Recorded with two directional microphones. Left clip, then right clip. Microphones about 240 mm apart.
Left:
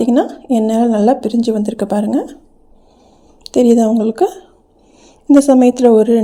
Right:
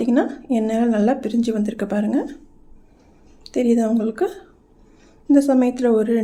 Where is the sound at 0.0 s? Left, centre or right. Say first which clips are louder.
Left 6 dB; left.